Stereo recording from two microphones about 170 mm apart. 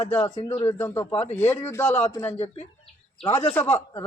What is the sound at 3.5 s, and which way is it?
Speech, 15° left (ahead or behind).